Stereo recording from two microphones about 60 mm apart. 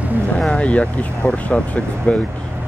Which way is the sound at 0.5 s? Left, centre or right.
Left.